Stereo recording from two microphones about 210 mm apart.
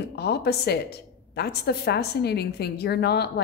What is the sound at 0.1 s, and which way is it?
Speech, 50° left (ahead or behind).